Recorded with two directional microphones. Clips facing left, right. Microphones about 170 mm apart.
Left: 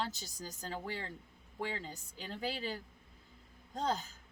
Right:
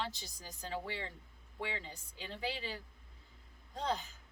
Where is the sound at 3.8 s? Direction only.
40° left (ahead or behind).